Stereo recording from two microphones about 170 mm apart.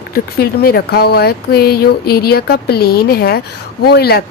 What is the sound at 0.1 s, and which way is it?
Speech, 65° left (ahead or behind).